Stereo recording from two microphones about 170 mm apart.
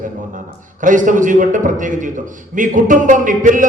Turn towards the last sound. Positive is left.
turn(degrees=-50)  # may be behind; listen again after turning